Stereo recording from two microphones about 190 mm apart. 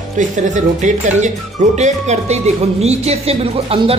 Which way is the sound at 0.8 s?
40° right (ahead or behind).